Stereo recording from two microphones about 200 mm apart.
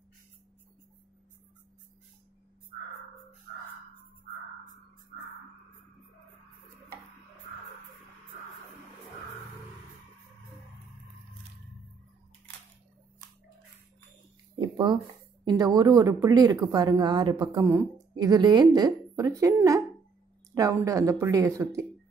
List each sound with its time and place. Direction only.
14.6 s a sound: 20° right (ahead or behind)
15.4 s speech: 20° right (ahead or behind)
20.8 s speech: 15° right (ahead or behind)